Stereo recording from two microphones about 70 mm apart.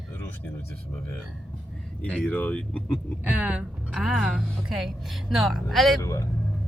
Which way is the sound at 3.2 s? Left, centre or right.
Centre.